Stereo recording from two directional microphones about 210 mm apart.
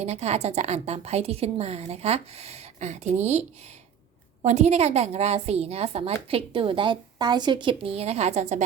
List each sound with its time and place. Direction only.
0.0 s a woman's voice: 30° right (ahead or behind)
4.4 s a woman's voice: 30° right (ahead or behind)